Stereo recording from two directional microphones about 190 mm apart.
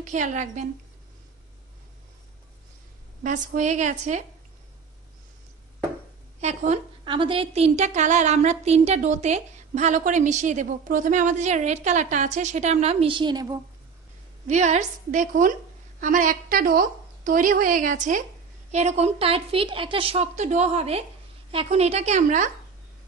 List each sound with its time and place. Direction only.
0.0 s a woman's voice: 40° right (ahead or behind)
3.3 s a woman's voice: 40° right (ahead or behind)
6.4 s a woman's voice: 35° right (ahead or behind); by 13.6 s 20° right (ahead or behind)
14.5 s a woman's voice: 35° right (ahead or behind)